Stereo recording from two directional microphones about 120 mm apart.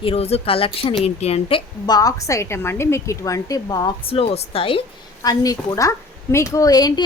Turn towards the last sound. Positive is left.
turn(degrees=30)  # may be behind; listen again after turning